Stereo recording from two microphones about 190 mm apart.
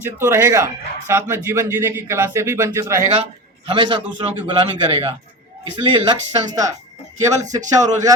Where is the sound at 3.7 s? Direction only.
25° right (ahead or behind).